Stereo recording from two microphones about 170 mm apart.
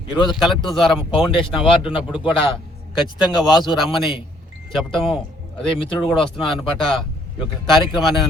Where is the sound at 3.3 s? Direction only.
25° left (ahead or behind).